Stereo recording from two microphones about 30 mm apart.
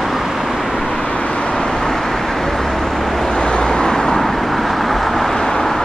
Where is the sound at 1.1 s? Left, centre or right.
Left.